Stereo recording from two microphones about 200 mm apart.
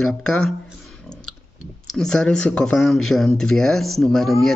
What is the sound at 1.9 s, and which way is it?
Speech, 5° left (ahead or behind).